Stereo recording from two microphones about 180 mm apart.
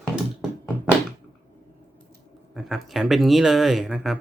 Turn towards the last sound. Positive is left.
turn(degrees=0)  # may be behind; listen again after turning